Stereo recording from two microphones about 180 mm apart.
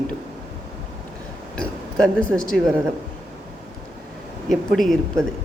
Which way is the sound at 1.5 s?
5° left (ahead or behind).